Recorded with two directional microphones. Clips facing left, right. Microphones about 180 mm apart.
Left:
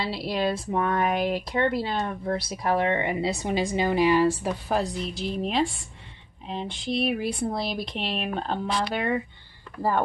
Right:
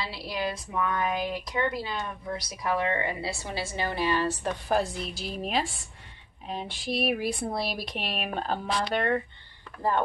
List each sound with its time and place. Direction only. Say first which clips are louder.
0.0 s speech: left 6 dB; 30° left (ahead or behind); by 4.6 s 10° left (ahead or behind)
4.6 s speech: right 1 dB; centre (ahead or behind)